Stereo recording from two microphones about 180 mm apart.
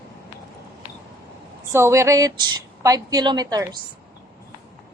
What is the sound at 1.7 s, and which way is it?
A woman's voice, 15° right (ahead or behind).